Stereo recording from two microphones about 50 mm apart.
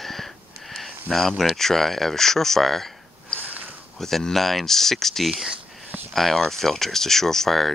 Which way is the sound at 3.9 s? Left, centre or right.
Centre.